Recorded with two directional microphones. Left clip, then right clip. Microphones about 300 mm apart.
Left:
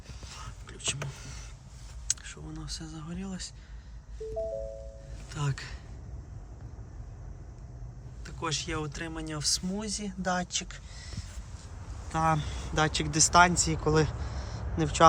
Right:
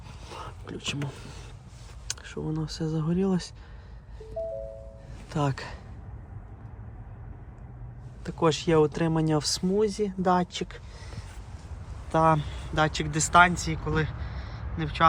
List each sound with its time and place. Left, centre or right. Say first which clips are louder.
0.3 s a sound: right 7 dB; centre
2.0 s speech: right 3 dB; centre
5.3 s speech: right 8 dB; centre
8.2 s speech: right 8 dB; centre
12.1 s speech: right 5 dB; centre